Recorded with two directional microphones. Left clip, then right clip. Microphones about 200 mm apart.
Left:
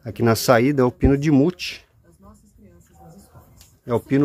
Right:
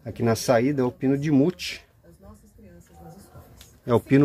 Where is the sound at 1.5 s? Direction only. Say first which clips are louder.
Left 3 dB; 15° left (ahead or behind).